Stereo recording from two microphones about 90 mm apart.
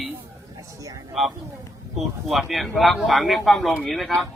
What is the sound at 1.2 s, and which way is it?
Speech, centre (ahead or behind).